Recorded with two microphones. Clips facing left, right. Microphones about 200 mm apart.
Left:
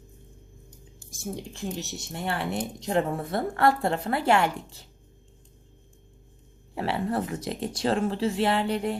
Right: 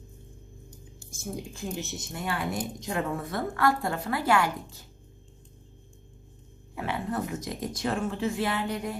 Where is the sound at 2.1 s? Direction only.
30° left (ahead or behind).